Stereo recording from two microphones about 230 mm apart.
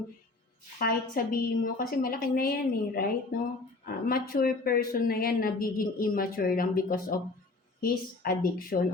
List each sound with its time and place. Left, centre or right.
0.8 s speech: left